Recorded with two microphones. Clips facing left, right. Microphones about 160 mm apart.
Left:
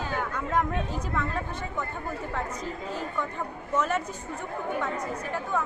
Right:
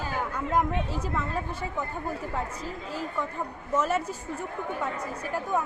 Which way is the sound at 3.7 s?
5° right (ahead or behind).